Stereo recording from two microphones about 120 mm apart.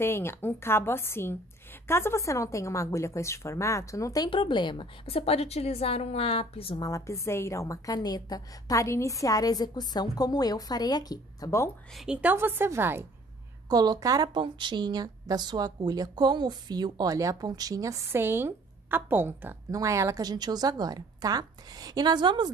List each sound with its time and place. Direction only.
0.0 s a woman's voice: 20° left (ahead or behind)
4.3 s a woman's voice: 45° left (ahead or behind)
6.8 s a woman's voice: 25° left (ahead or behind)
12.1 s a woman's voice: 15° right (ahead or behind)
13.7 s a woman's voice: 35° right (ahead or behind)